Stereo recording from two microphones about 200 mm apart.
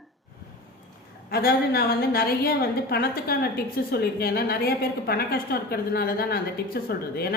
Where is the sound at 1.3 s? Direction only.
50° left (ahead or behind).